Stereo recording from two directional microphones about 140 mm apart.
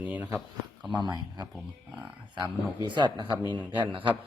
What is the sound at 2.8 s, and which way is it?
Speech, 35° right (ahead or behind).